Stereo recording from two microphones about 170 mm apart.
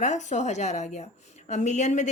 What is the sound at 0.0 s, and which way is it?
Speech, 45° left (ahead or behind).